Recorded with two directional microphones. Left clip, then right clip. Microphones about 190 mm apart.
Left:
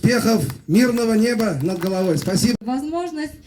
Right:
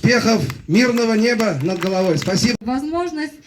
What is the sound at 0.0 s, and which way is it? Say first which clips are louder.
A man's voice: right 3 dB; 65° left (ahead or behind).